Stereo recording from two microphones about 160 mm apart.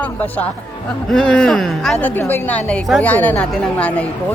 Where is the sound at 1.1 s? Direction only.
5° left (ahead or behind).